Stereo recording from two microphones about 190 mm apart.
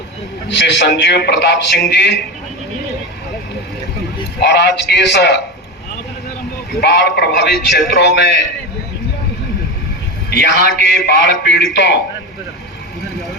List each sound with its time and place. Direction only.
0.4 s a man's voice: 65° left (ahead or behind)
4.4 s a man's voice: 65° left (ahead or behind)
6.8 s a man's voice: 65° left (ahead or behind)
10.2 s a man's voice: 60° left (ahead or behind)